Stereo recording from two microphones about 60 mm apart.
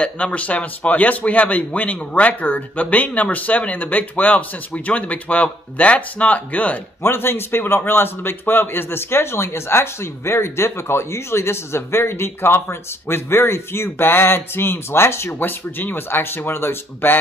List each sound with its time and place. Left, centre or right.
0.0 s a man's voice: left
7.0 s a man's voice: left
15.3 s speech: left